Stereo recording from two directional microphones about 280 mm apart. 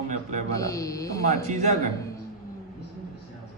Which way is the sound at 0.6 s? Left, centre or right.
Centre.